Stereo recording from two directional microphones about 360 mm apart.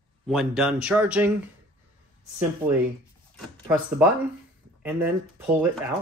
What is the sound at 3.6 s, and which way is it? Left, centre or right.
Speech, centre.